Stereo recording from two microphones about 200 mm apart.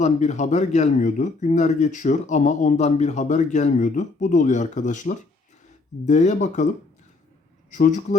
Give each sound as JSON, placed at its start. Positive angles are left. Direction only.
{"t": 0.0, "sound": "speech", "side_deg": 35}
{"t": 7.7, "sound": "speech", "side_deg": 40}